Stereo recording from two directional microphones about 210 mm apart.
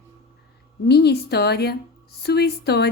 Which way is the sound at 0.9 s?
50° left (ahead or behind).